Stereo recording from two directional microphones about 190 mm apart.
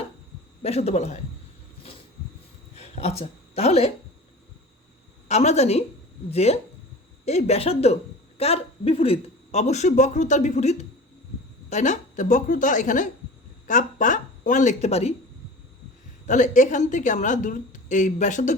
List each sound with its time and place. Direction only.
0.6 s speech: 35° left (ahead or behind)
2.7 s a sound: 35° left (ahead or behind)
5.3 s speech: 35° left (ahead or behind)
16.2 s speech: 40° left (ahead or behind)